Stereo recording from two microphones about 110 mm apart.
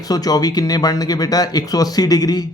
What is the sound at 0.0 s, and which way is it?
Speech, 35° left (ahead or behind).